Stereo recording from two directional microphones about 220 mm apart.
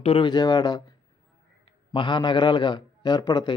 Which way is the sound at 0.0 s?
25° left (ahead or behind).